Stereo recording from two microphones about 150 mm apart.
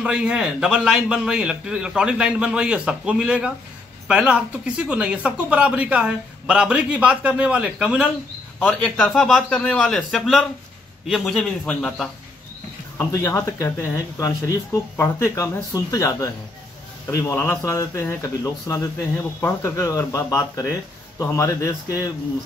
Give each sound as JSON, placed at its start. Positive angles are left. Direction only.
{"t": 0.0, "sound": "a man's voice", "side_deg": -5}
{"t": 8.5, "sound": "a man's voice", "side_deg": 5}
{"t": 12.9, "sound": "speech", "side_deg": 20}